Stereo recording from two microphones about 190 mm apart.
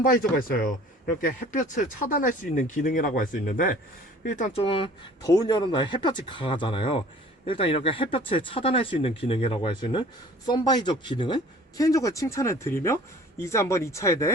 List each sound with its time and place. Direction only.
0.0 s speech: 50° left (ahead or behind)
4.6 s speech: 30° left (ahead or behind)